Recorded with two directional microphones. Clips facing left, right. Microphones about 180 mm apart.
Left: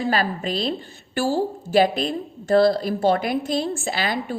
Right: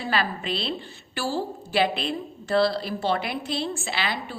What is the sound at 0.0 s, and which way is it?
A woman's voice, 45° left (ahead or behind).